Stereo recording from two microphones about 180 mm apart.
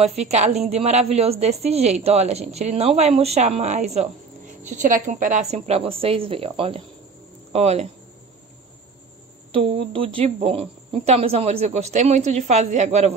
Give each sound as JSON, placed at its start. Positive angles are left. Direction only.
{"t": 0.0, "sound": "speech", "side_deg": -35}
{"t": 9.5, "sound": "speech", "side_deg": -30}